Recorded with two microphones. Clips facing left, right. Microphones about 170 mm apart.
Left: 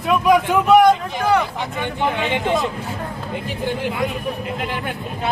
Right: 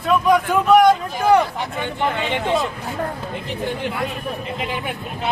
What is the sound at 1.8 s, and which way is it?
Speech, 15° left (ahead or behind).